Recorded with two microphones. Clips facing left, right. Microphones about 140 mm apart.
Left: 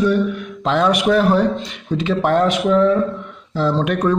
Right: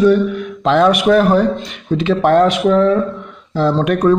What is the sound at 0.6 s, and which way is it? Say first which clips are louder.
Speech: right 4 dB; 60° right (ahead or behind).